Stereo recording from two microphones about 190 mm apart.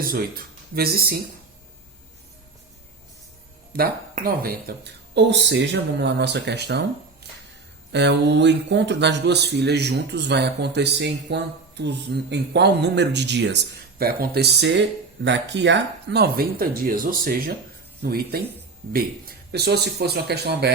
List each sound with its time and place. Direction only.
0.0 s speech: 50° right (ahead or behind)
3.7 s speech: 50° right (ahead or behind)
7.9 s speech: 65° right (ahead or behind)
19.5 s speech: 60° right (ahead or behind)